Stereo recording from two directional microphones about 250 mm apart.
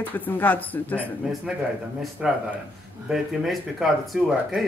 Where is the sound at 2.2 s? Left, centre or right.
Centre.